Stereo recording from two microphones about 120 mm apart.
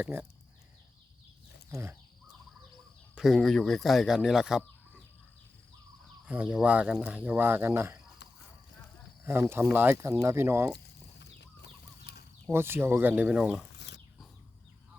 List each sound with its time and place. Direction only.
0.0 s speech: 15° right (ahead or behind)
1.7 s speech: 20° right (ahead or behind)
3.2 s speech: centre (ahead or behind)
6.2 s speech: 10° right (ahead or behind)
9.2 s speech: 20° right (ahead or behind)
12.5 s speech: 20° right (ahead or behind)